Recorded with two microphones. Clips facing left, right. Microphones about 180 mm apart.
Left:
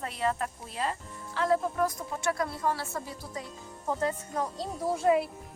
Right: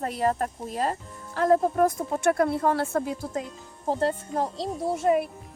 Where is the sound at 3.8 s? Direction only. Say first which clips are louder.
Right 5 dB; 30° right (ahead or behind).